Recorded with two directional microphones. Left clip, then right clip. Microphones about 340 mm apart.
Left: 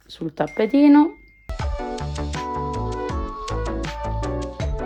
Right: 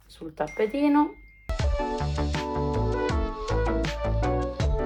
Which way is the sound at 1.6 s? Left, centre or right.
Centre.